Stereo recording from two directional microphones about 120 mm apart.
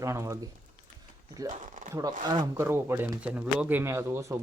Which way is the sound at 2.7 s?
20° right (ahead or behind).